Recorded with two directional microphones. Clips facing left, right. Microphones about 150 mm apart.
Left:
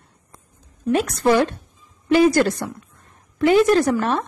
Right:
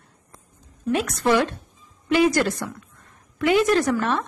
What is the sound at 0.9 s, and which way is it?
A woman's voice, 35° left (ahead or behind).